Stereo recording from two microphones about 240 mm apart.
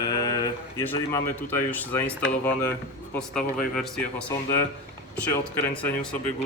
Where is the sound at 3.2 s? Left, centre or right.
Centre.